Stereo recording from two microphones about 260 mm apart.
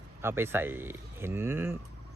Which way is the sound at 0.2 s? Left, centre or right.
Centre.